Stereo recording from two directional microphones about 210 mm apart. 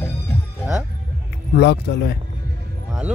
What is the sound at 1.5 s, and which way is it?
Speech, 55° left (ahead or behind).